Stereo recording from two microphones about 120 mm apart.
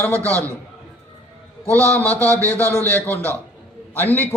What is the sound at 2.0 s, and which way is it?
A man's voice, 15° left (ahead or behind).